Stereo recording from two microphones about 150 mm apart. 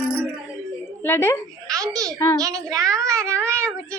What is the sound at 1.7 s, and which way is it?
A woman's voice, 25° right (ahead or behind).